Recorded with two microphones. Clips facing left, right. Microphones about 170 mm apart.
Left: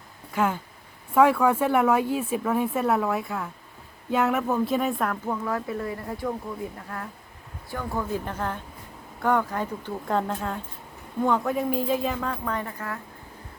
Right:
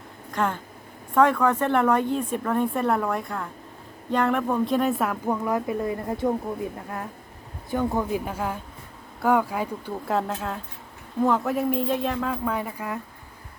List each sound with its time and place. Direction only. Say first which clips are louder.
0.3 s speech: left 1 dB; 5° left (ahead or behind)
5.3 s speech: right 3 dB; 15° right (ahead or behind)
7.7 s speech: right 5 dB; 20° right (ahead or behind)
8.2 s speech: right 1 dB; 10° right (ahead or behind)